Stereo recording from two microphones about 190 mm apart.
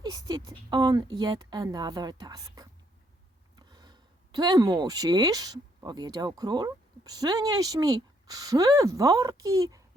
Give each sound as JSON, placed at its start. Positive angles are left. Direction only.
{"t": 0.0, "sound": "speech", "side_deg": -20}